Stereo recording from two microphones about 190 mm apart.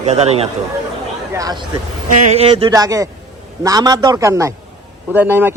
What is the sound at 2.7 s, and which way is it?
A man's voice, 20° right (ahead or behind).